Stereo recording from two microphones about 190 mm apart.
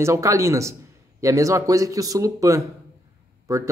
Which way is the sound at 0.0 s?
15° right (ahead or behind).